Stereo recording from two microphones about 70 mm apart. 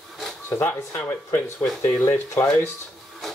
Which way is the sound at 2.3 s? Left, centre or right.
Left.